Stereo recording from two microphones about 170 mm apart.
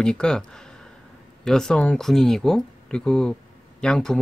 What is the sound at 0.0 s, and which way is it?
Speech, 5° left (ahead or behind).